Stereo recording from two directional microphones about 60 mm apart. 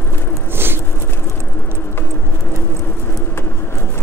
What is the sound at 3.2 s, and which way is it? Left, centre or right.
Vehicle, left.